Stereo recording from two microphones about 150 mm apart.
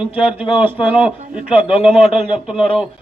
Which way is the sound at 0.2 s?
35° left (ahead or behind).